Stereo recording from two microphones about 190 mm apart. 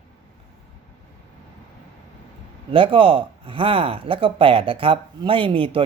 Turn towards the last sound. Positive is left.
turn(degrees=-30)  # may be behind; listen again after turning